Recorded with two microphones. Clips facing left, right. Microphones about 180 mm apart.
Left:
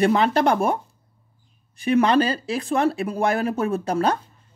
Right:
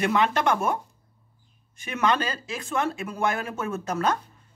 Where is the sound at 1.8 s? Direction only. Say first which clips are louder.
Left 8 dB; 35° left (ahead or behind).